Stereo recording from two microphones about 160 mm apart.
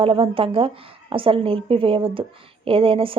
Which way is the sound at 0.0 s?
35° right (ahead or behind).